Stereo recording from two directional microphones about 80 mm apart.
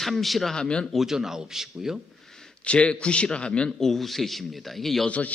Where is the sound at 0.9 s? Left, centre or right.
Centre.